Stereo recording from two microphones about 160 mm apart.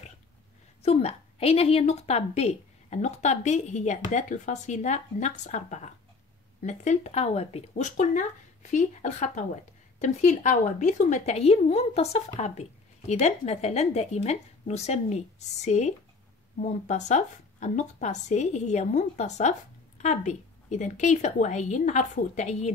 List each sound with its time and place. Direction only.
0.8 s a woman's voice: 40° left (ahead or behind)